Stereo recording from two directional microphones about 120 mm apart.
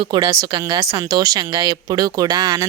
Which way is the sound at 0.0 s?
40° right (ahead or behind).